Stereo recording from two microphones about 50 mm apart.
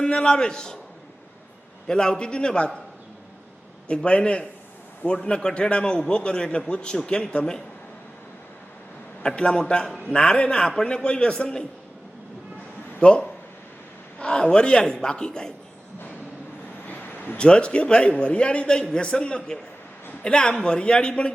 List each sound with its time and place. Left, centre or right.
0.0 s a man's voice: centre
1.9 s a man's voice: centre
3.8 s a man's voice: left
9.2 s a man's voice: centre
13.0 s a man's voice: left
16.8 s a sound: left
17.3 s a man's voice: centre